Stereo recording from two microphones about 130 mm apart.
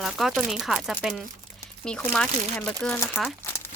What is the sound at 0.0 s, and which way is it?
Speech, centre (ahead or behind).